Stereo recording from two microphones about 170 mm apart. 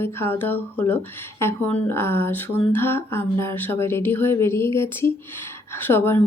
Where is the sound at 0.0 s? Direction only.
15° left (ahead or behind).